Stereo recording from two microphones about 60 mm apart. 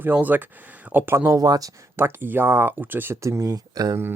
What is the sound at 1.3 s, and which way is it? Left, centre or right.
Speech, right.